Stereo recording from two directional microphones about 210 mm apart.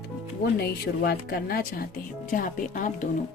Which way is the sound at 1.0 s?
45° left (ahead or behind).